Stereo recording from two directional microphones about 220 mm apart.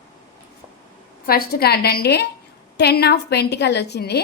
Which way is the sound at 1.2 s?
45° left (ahead or behind).